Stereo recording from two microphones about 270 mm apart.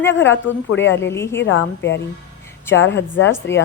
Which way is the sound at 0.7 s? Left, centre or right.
Left.